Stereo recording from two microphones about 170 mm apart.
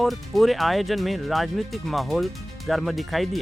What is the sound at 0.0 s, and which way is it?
Speech, centre (ahead or behind).